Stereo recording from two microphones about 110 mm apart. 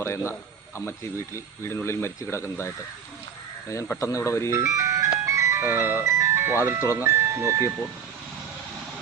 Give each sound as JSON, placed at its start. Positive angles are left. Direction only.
{"t": 0.0, "sound": "speech", "side_deg": 25}
{"t": 3.8, "sound": "speech", "side_deg": 25}
{"t": 4.5, "sound": "speech", "side_deg": -30}